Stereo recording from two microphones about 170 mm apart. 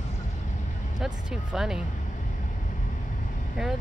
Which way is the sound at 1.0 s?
5° right (ahead or behind).